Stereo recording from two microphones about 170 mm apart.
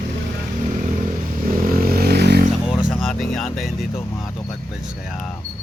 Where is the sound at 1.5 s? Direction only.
60° right (ahead or behind).